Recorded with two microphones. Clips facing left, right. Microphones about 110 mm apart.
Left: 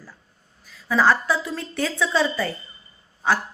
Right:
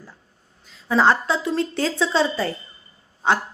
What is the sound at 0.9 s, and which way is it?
A woman's voice, 25° right (ahead or behind).